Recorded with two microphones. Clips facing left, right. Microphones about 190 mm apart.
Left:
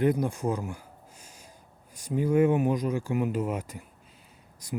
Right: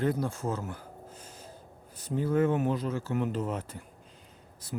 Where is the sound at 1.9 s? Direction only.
10° left (ahead or behind).